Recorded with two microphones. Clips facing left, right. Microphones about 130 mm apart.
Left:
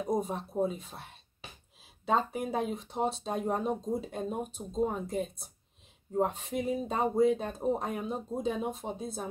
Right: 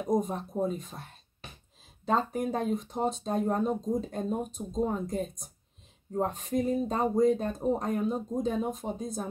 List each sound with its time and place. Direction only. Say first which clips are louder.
0.0 s speech: right 3 dB; 5° left (ahead or behind)
2.0 s speech: right 1 dB; 5° left (ahead or behind)